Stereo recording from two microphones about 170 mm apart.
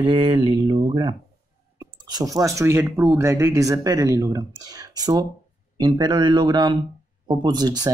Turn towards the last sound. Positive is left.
turn(degrees=-25)  # may be behind; listen again after turning